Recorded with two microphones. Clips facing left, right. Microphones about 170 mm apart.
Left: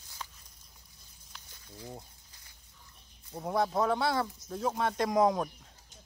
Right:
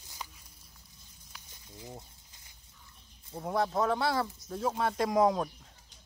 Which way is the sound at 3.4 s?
Centre (ahead or behind).